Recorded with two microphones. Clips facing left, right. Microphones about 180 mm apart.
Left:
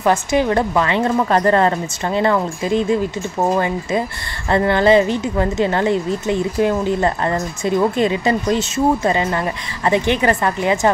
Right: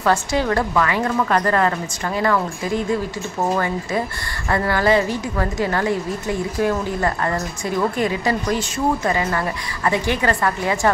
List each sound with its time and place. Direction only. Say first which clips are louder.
0.0 s a woman's voice: left 3 dB; 20° left (ahead or behind)